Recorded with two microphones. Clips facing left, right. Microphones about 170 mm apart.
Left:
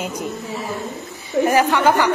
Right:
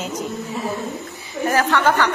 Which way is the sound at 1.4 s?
10° left (ahead or behind).